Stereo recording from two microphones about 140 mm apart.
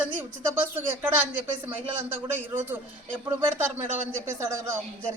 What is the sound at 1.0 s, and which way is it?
A man's voice, 10° right (ahead or behind).